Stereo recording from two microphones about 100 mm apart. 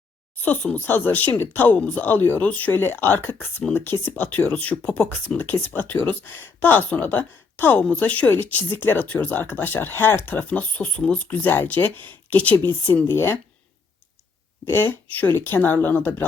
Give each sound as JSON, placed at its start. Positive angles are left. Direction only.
{"t": 0.3, "sound": "speech", "side_deg": 15}
{"t": 14.6, "sound": "speech", "side_deg": 20}